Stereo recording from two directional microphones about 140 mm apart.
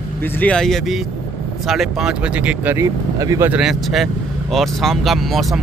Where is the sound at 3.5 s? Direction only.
5° right (ahead or behind).